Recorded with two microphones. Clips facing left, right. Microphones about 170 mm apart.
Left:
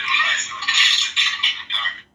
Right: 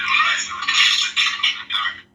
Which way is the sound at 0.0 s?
25° left (ahead or behind).